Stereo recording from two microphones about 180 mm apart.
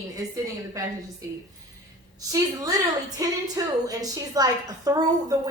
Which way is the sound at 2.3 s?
20° right (ahead or behind).